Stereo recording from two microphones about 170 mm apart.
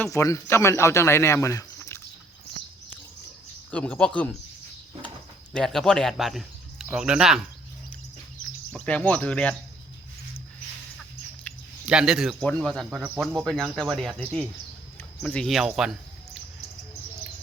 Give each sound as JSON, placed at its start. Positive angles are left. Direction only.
{"t": 0.0, "sound": "a man's voice", "side_deg": 20}
{"t": 3.7, "sound": "a man's voice", "side_deg": 5}
{"t": 5.5, "sound": "speech", "side_deg": 5}
{"t": 8.7, "sound": "a man's voice", "side_deg": 5}
{"t": 11.9, "sound": "speech", "side_deg": -5}